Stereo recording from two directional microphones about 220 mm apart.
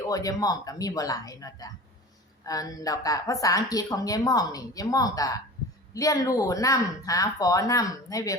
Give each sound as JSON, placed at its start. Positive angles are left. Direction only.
{"t": 0.1, "sound": "a woman's voice", "side_deg": 15}